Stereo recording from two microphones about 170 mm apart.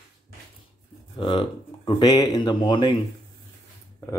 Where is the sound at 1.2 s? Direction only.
30° left (ahead or behind).